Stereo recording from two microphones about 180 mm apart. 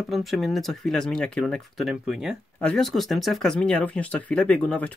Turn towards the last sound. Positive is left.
turn(degrees=5)  # may be behind; listen again after turning